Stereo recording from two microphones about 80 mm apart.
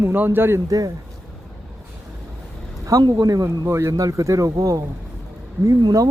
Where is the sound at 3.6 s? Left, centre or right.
Right.